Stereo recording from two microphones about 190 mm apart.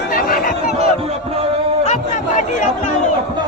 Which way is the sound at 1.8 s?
40° left (ahead or behind).